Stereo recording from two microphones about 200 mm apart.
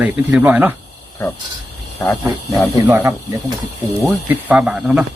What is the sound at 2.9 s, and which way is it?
Speech, 15° right (ahead or behind).